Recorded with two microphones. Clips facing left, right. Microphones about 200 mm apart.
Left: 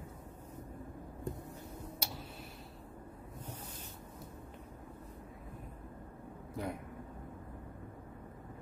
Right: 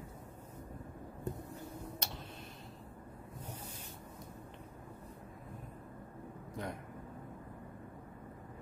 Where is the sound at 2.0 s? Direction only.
10° left (ahead or behind).